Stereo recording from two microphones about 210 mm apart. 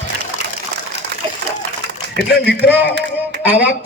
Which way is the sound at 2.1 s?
55° left (ahead or behind).